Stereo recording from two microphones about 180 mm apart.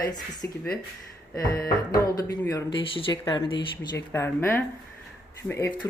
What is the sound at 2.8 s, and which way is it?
Speech, 30° left (ahead or behind).